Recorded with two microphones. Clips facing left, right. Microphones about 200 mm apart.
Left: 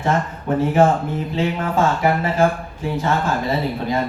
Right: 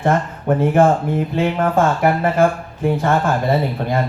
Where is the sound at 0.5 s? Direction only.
55° right (ahead or behind).